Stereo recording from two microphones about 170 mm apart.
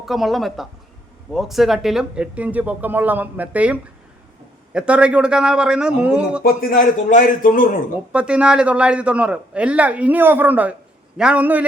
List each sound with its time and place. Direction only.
0.0 s a man's voice: centre (ahead or behind)
6.4 s a man's voice: 55° left (ahead or behind)
8.1 s a man's voice: 5° right (ahead or behind)